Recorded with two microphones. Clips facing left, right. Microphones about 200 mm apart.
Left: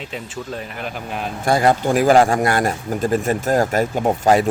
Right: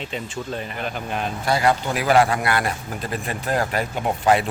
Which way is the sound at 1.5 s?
45° left (ahead or behind).